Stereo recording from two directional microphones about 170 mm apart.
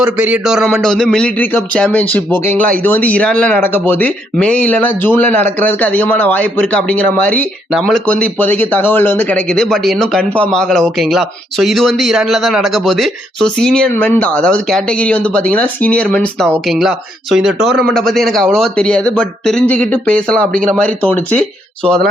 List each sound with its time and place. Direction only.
0.0 s speech: 10° right (ahead or behind); by 2.4 s 10° left (ahead or behind)
2.4 s speech: 45° right (ahead or behind)
2.7 s speech: 10° left (ahead or behind)